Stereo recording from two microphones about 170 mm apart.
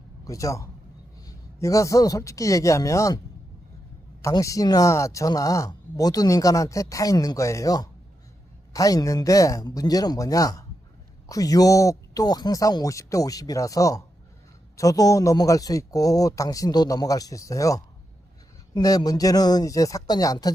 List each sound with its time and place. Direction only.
0.3 s a man's voice: 20° left (ahead or behind)
4.2 s speech: 20° left (ahead or behind)